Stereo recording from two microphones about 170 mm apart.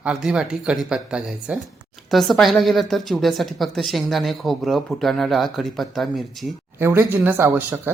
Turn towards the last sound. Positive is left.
turn(degrees=-15)  # may be behind; listen again after turning